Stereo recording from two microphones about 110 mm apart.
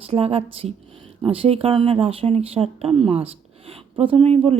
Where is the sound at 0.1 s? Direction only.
65° right (ahead or behind).